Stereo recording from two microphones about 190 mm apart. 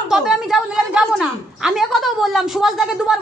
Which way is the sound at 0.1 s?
Centre (ahead or behind).